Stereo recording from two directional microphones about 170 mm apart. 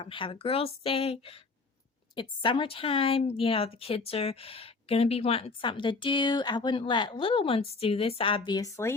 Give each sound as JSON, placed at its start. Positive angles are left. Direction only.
{"t": 0.0, "sound": "a woman's voice", "side_deg": 30}